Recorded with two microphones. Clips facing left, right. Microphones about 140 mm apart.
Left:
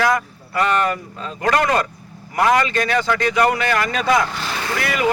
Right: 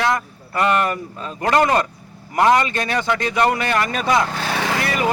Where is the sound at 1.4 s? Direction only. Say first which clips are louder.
Right 1 dB; 25° right (ahead or behind).